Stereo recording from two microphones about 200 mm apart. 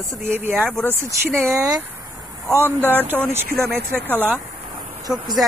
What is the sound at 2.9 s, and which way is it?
Speech, 10° right (ahead or behind).